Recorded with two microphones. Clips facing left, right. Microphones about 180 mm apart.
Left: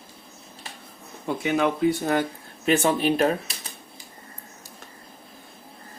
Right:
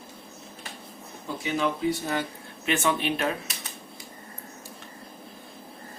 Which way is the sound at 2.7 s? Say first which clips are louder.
Left 5 dB; 40° left (ahead or behind).